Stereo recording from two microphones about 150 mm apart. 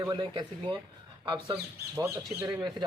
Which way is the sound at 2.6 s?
30° right (ahead or behind).